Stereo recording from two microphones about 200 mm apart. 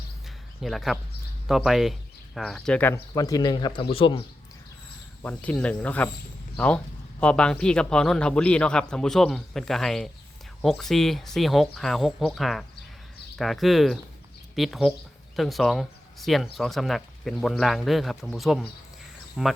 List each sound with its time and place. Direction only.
0.6 s speech: centre (ahead or behind); by 4.2 s 25° left (ahead or behind)
5.2 s speech: 5° left (ahead or behind)